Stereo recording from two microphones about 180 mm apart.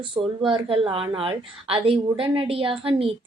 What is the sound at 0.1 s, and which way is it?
A woman's voice, 30° right (ahead or behind).